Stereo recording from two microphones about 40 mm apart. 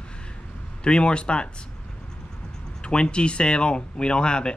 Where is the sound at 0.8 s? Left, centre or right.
Left.